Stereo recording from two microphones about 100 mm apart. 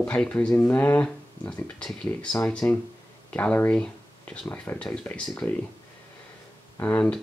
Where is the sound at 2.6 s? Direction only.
20° left (ahead or behind).